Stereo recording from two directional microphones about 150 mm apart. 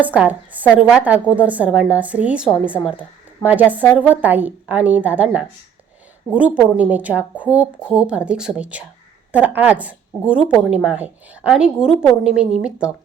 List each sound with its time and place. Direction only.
0.0 s a woman's voice: 10° right (ahead or behind)